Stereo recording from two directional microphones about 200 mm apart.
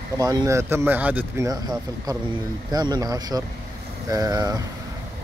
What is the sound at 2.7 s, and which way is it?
Speech, 20° right (ahead or behind).